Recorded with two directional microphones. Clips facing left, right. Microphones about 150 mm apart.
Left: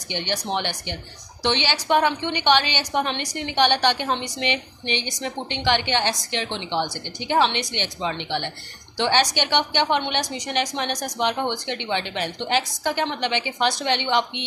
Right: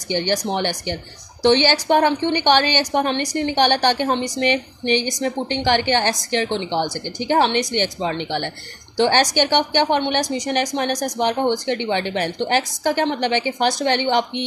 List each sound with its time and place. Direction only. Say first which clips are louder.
0.1 s a woman's voice: right 5 dB; 40° right (ahead or behind)